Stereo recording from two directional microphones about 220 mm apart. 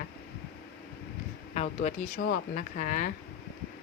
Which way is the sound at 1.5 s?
30° left (ahead or behind).